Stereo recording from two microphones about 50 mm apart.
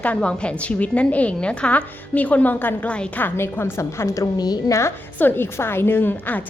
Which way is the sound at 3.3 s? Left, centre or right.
Left.